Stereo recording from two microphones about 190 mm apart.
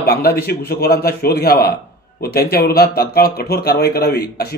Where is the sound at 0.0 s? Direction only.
55° left (ahead or behind).